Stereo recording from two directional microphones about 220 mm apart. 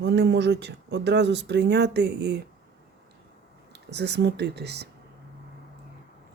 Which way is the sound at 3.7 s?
50° right (ahead or behind).